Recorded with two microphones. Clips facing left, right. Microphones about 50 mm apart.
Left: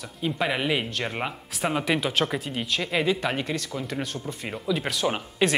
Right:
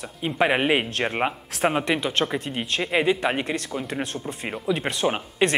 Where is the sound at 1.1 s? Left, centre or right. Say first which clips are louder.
Right 5 dB; right.